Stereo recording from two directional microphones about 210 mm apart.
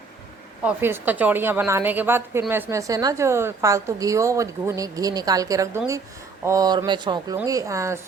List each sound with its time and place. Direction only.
0.6 s a woman's voice: 10° right (ahead or behind)